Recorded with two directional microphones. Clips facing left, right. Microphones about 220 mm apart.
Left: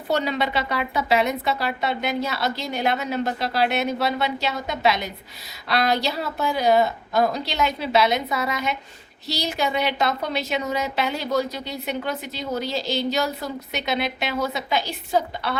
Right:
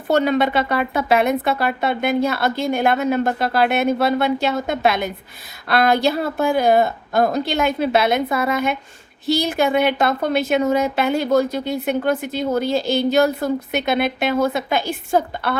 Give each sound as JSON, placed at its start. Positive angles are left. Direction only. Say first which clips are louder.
{"t": 0.1, "sound": "a woman's voice", "louder": "right 6 dB", "side_deg": -50}